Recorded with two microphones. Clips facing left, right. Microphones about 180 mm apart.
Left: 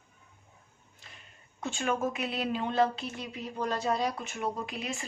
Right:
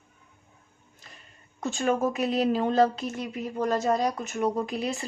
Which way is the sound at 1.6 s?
40° right (ahead or behind).